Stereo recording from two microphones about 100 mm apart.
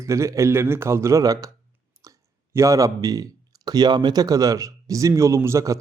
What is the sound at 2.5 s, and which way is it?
Speech, 30° right (ahead or behind).